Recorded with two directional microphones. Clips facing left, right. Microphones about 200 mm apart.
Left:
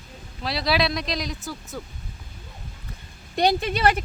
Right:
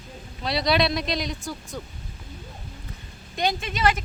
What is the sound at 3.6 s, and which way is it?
Speech, 55° left (ahead or behind).